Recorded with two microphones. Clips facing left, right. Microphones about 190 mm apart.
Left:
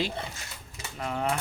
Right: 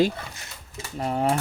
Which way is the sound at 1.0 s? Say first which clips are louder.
Right 6 dB; 35° right (ahead or behind).